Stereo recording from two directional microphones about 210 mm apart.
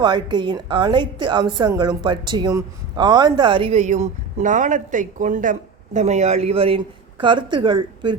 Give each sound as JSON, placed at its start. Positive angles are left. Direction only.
{"t": 0.0, "sound": "a woman's voice", "side_deg": -20}